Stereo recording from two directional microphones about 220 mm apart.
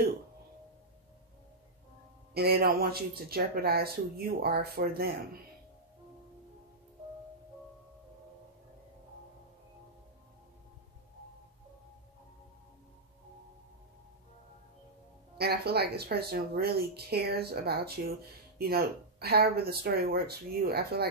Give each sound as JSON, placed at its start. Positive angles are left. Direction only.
{"t": 2.3, "sound": "speech", "side_deg": -45}
{"t": 15.3, "sound": "speech", "side_deg": -45}